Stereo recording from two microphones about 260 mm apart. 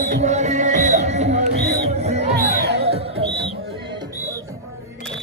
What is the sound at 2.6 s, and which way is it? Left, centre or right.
Music, right.